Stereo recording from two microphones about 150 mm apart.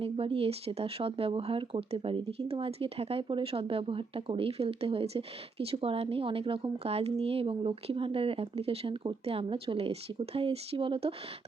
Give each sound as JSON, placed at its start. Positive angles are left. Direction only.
{"t": 0.0, "sound": "speech", "side_deg": -40}